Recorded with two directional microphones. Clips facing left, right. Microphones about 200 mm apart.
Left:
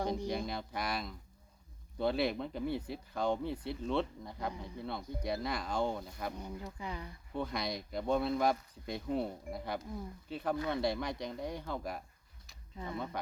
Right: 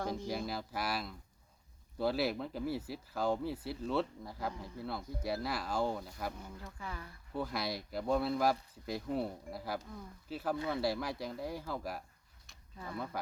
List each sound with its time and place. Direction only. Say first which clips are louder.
0.3 s speech: left 1 dB; 5° right (ahead or behind)
6.3 s speech: left 5 dB; 15° left (ahead or behind)
7.3 s speech: even; 5° right (ahead or behind)
12.7 s speech: left 3 dB; 20° left (ahead or behind)